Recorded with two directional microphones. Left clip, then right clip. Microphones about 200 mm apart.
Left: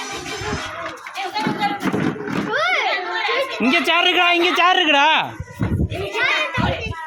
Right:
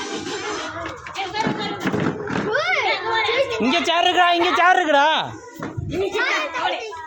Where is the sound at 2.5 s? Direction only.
60° right (ahead or behind).